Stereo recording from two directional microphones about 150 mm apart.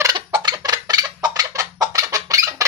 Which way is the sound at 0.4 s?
25° right (ahead or behind).